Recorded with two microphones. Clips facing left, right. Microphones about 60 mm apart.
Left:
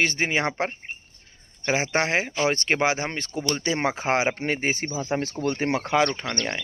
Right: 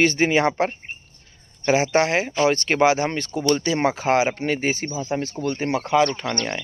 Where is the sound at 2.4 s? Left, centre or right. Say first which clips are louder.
Right 6 dB; left.